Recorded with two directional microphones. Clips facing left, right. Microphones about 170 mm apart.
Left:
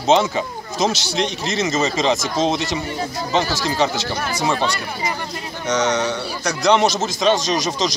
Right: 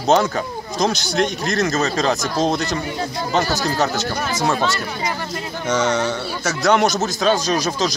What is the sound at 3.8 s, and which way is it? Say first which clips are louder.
Speech: even; centre (ahead or behind).